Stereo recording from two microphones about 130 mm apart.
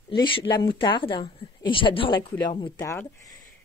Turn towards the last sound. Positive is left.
turn(degrees=20)  # may be behind; listen again after turning